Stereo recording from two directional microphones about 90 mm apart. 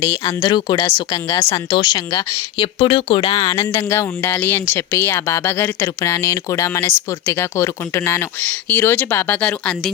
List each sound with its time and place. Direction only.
0.3 s speech: 50° left (ahead or behind)
0.9 s speech: 40° left (ahead or behind)
1.5 s speech: 55° left (ahead or behind)
2.6 s speech: 70° left (ahead or behind)
3.6 s speech: 35° left (ahead or behind); by 9.9 s 10° left (ahead or behind)